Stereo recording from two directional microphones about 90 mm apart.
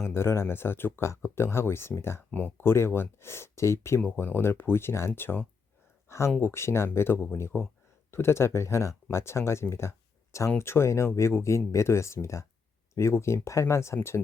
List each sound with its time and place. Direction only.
0.0 s speech: 25° left (ahead or behind)